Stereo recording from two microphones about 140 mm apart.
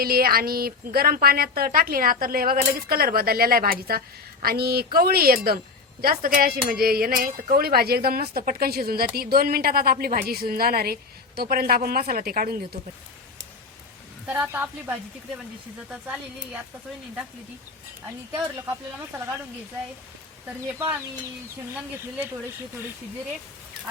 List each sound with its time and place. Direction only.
0.0 s a woman's voice: 90° right
14.3 s a woman's voice: 15° right (ahead or behind)